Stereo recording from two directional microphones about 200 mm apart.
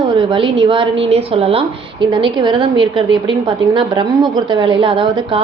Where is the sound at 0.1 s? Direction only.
25° right (ahead or behind).